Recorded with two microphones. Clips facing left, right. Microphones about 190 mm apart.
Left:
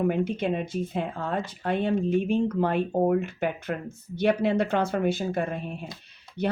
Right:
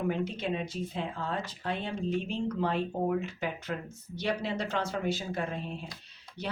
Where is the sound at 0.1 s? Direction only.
55° left (ahead or behind).